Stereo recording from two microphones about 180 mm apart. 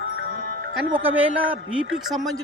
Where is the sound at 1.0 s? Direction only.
10° right (ahead or behind).